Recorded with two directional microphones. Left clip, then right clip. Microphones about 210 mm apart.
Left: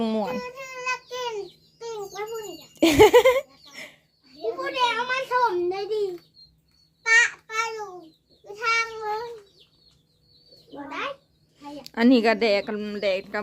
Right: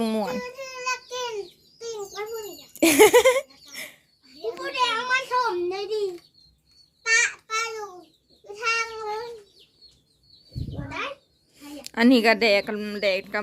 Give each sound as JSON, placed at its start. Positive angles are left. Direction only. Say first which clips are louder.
{"t": 0.0, "sound": "child singing", "louder": "even", "side_deg": 0}
{"t": 2.7, "sound": "a sound", "louder": "left 1 dB", "side_deg": 5}
{"t": 4.6, "sound": "a sound", "louder": "even", "side_deg": -15}
{"t": 7.0, "sound": "babbling", "louder": "left 3 dB", "side_deg": 10}
{"t": 8.4, "sound": "cat", "louder": "left 2 dB", "side_deg": 10}
{"t": 11.6, "sound": "speech", "louder": "right 1 dB", "side_deg": 0}